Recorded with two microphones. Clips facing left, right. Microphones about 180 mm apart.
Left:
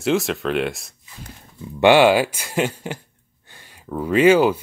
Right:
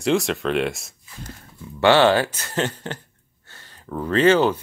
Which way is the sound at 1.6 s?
15° left (ahead or behind).